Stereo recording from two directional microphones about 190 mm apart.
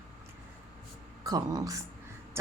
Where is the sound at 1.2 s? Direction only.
20° right (ahead or behind).